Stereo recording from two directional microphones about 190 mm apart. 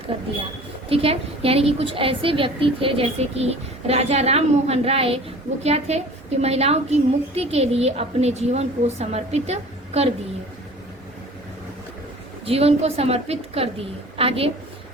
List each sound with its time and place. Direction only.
0.9 s a woman's voice: 30° right (ahead or behind)
12.5 s a woman's voice: 30° right (ahead or behind)